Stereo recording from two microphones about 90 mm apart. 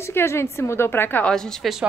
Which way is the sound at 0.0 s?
30° left (ahead or behind).